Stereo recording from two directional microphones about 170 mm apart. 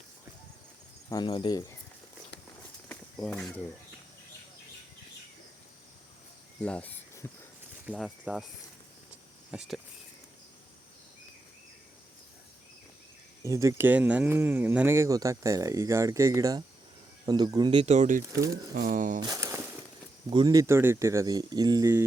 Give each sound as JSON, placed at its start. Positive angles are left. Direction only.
{"t": 1.1, "sound": "speech", "side_deg": 30}
{"t": 2.9, "sound": "a sound", "side_deg": 5}
{"t": 6.6, "sound": "cricket", "side_deg": 10}
{"t": 7.9, "sound": "speech", "side_deg": -5}
{"t": 9.5, "sound": "speech", "side_deg": -5}
{"t": 13.4, "sound": "speech", "side_deg": -15}
{"t": 18.3, "sound": "speech", "side_deg": -20}
{"t": 18.7, "sound": "speech", "side_deg": -50}
{"t": 19.2, "sound": "a sound", "side_deg": -20}
{"t": 20.3, "sound": "speech", "side_deg": -25}